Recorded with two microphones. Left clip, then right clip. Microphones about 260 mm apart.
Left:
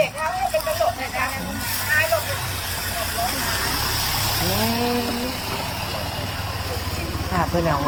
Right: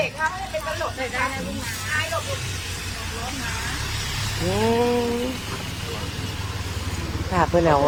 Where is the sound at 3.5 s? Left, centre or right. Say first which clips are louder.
Left 5 dB; centre.